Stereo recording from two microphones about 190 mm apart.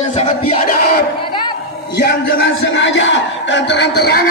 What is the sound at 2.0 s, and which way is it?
A man's voice, 70° left (ahead or behind).